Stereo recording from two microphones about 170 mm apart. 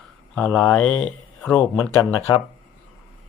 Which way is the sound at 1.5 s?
25° left (ahead or behind).